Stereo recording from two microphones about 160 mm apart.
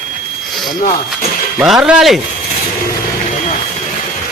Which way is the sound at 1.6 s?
5° right (ahead or behind).